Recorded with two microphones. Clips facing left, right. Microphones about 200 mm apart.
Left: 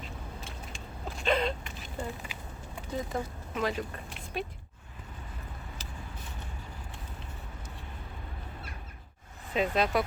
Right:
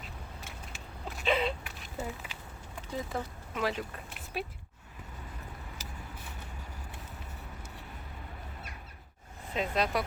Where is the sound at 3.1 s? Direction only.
Centre (ahead or behind).